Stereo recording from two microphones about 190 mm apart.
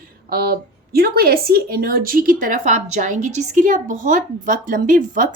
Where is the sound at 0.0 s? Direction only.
50° right (ahead or behind).